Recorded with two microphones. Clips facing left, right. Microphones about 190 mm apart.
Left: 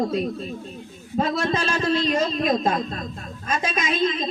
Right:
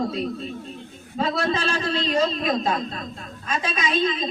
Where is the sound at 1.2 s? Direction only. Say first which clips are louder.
Left 1 dB; 45° left (ahead or behind).